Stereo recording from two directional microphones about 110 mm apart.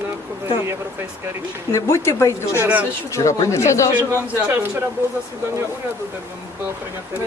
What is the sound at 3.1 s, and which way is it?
Speech, 30° left (ahead or behind).